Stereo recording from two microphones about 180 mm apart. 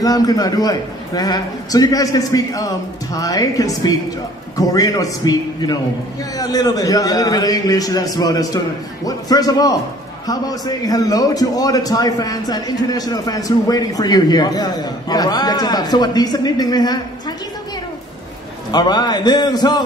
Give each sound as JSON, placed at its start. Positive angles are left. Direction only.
{"t": 0.0, "sound": "a man's voice", "side_deg": 20}
{"t": 18.7, "sound": "a man's voice", "side_deg": 25}